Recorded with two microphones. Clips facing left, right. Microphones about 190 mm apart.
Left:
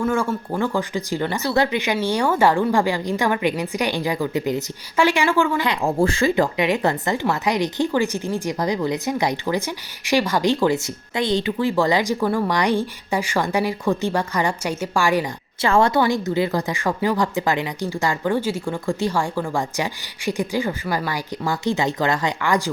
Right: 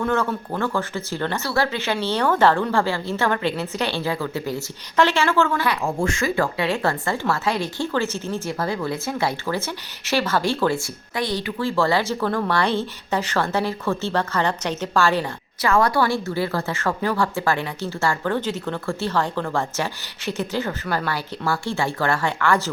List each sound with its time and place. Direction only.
0.0 s a woman's voice: 10° left (ahead or behind)
5.8 s speech: 35° left (ahead or behind)
6.3 s a woman's voice: 20° left (ahead or behind)
15.6 s a woman's voice: 25° left (ahead or behind)